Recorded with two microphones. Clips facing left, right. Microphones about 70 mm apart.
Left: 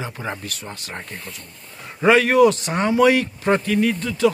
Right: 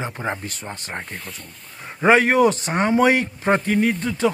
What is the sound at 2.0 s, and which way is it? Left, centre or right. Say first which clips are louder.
A man's voice: left 1 dB; right.